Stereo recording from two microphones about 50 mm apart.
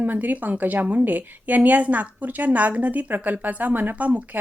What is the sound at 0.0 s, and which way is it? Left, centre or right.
Speech, right.